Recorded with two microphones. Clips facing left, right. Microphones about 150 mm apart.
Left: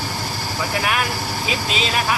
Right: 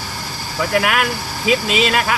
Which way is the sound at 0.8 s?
80° right.